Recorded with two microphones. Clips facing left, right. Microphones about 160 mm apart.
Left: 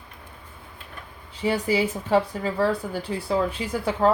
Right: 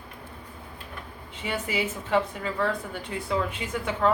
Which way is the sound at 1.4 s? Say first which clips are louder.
Left 7 dB; 35° left (ahead or behind).